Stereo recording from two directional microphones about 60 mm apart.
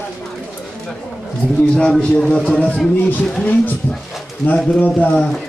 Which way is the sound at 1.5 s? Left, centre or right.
Centre.